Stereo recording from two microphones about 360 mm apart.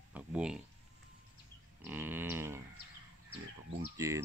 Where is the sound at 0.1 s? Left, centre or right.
Centre.